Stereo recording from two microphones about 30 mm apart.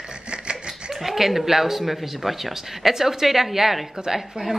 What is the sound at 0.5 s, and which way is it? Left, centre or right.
Laughter, centre.